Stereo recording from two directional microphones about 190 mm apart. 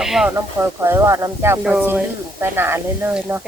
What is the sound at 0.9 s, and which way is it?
Speech, 15° right (ahead or behind).